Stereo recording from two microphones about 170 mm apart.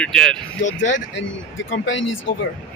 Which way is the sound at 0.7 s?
90° left.